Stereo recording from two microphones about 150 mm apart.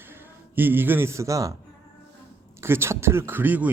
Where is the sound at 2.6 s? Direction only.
15° right (ahead or behind).